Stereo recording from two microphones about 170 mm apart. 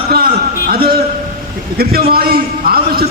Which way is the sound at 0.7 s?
65° right (ahead or behind).